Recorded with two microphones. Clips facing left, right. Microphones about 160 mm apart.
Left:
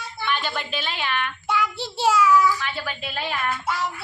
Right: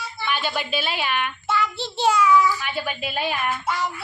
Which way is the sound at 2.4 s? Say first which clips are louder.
Even; 15° right (ahead or behind).